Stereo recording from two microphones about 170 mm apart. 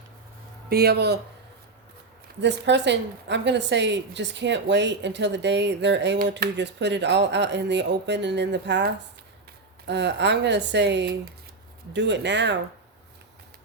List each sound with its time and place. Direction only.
0.7 s speech: 65° right (ahead or behind)
2.4 s a woman's voice: 90° right